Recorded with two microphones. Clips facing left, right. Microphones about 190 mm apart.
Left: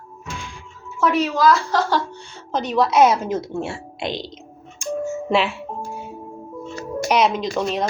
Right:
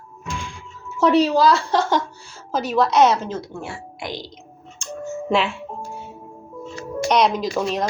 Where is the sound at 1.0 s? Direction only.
35° right (ahead or behind).